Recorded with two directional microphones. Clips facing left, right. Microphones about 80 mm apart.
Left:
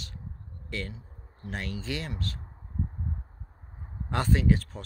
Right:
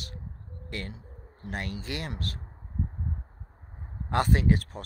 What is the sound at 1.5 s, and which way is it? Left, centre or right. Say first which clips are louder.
Speech: even; right.